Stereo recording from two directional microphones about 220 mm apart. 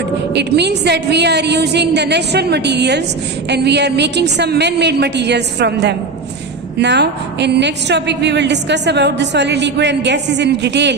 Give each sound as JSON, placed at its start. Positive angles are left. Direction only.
{"t": 0.3, "sound": "a woman's voice", "side_deg": -50}